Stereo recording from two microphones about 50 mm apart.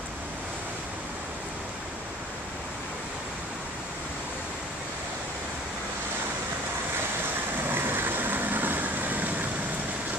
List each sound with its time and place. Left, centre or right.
7.7 s vehicle: right